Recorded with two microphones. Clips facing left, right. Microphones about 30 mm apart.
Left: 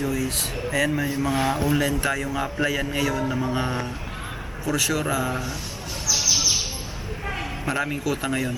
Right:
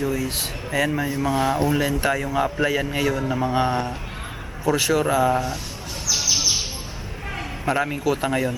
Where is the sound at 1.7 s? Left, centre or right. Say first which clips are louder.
Right 1 dB; centre.